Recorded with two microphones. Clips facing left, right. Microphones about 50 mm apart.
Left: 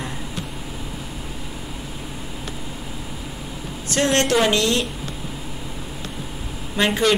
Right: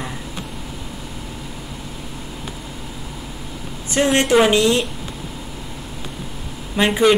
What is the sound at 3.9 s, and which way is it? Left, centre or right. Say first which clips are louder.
Speech: right 3 dB; centre.